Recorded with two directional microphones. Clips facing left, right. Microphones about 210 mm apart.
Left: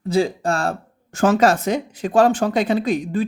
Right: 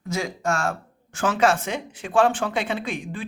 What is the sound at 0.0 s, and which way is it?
Speech, 30° left (ahead or behind).